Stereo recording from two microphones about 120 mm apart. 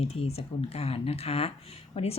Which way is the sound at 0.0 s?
60° left (ahead or behind).